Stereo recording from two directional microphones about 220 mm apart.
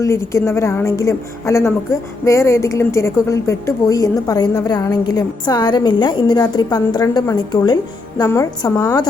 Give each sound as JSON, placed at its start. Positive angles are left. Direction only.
{"t": 0.0, "sound": "a woman's voice", "side_deg": 10}